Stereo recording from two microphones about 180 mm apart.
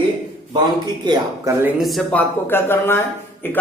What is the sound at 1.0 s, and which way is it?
Speech, 25° right (ahead or behind).